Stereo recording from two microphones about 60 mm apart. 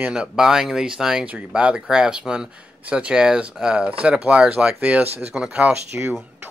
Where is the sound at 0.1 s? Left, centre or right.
Centre.